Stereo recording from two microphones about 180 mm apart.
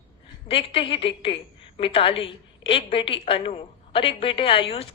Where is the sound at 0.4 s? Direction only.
30° left (ahead or behind).